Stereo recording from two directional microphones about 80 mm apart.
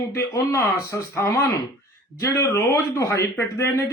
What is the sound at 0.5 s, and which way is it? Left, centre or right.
A man's voice, left.